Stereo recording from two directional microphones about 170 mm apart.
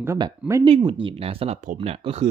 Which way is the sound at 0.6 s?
30° right (ahead or behind).